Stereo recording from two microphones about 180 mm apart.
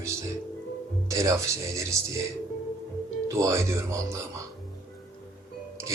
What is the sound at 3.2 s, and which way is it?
Speech, 15° right (ahead or behind).